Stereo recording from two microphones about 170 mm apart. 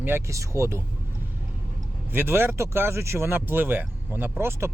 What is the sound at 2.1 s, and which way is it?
Speech, 15° right (ahead or behind).